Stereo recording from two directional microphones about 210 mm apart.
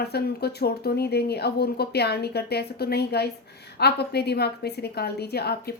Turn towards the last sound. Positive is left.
turn(degrees=50)  # may be behind; listen again after turning